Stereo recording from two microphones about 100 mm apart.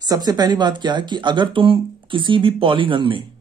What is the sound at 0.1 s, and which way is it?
Speech, 40° right (ahead or behind).